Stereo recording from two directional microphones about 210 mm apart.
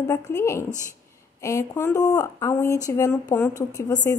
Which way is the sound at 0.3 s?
15° left (ahead or behind).